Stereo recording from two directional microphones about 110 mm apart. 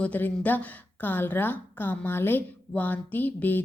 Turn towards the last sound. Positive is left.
turn(degrees=15)  # may be behind; listen again after turning